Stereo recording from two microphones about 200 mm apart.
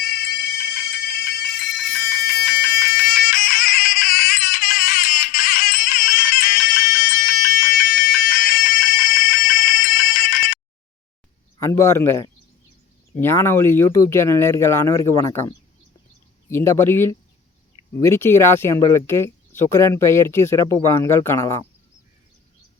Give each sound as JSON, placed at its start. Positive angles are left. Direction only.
{"t": 0.0, "sound": "fire alarm", "side_deg": 50}
{"t": 11.6, "sound": "speech", "side_deg": 15}